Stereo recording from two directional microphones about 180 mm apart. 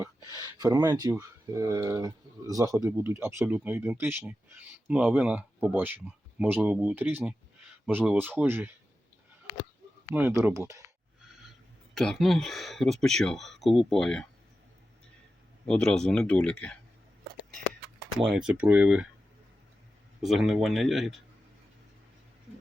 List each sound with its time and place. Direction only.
0.3 s speech: 20° right (ahead or behind)
10.1 s speech: 10° right (ahead or behind)
11.9 s speech: centre (ahead or behind)
15.6 s speech: 5° left (ahead or behind)
18.2 s speech: 5° right (ahead or behind)
20.2 s speech: centre (ahead or behind)